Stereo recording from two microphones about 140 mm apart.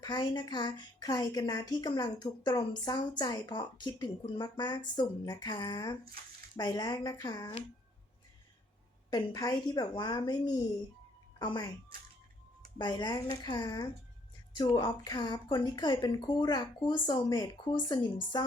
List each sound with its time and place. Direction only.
0.0 s a woman's voice: 30° left (ahead or behind)
9.0 s a woman's voice: 30° left (ahead or behind)
12.8 s a woman's voice: 30° left (ahead or behind)